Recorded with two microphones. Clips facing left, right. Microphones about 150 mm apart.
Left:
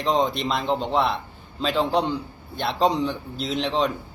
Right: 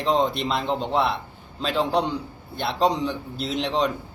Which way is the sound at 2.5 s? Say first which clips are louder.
Left 1 dB; 5° right (ahead or behind).